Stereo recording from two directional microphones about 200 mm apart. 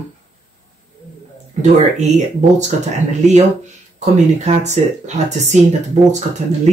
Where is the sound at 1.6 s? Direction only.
35° right (ahead or behind).